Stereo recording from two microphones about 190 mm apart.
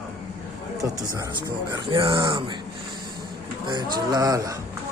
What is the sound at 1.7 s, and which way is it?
Speech, 25° right (ahead or behind).